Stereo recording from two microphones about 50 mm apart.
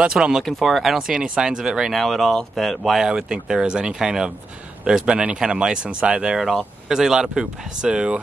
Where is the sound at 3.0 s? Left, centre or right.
Centre.